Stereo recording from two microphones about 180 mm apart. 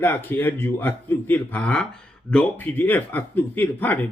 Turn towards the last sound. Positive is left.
turn(degrees=10)  # may be behind; listen again after turning